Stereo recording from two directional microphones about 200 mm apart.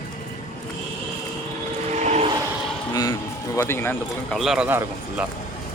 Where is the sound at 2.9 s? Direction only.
20° left (ahead or behind).